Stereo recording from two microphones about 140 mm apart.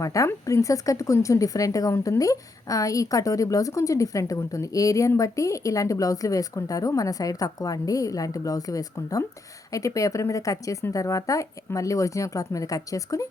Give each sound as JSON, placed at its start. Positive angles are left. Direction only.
{"t": 0.0, "sound": "speech", "side_deg": 25}